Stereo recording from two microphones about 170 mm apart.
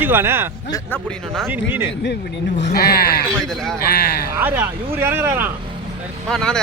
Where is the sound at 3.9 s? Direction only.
70° left (ahead or behind).